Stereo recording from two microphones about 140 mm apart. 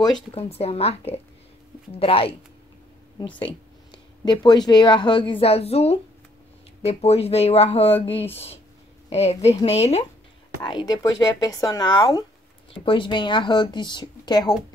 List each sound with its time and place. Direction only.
0.3 s speech: 45° left (ahead or behind)
10.6 s speech: 35° left (ahead or behind)